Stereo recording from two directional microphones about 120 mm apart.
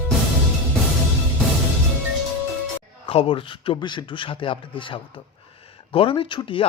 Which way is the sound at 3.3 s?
40° left (ahead or behind).